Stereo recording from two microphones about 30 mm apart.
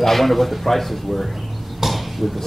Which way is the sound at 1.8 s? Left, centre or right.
Centre.